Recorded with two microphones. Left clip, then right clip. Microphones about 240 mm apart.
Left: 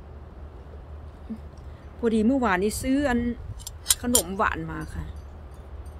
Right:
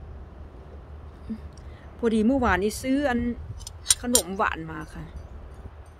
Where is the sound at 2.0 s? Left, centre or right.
Centre.